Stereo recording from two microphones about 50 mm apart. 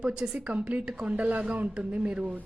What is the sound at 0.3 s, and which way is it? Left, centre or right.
A woman's voice, right.